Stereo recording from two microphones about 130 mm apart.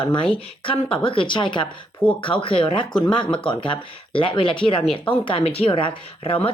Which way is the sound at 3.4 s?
40° left (ahead or behind).